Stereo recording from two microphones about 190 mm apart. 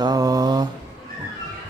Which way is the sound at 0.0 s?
20° right (ahead or behind).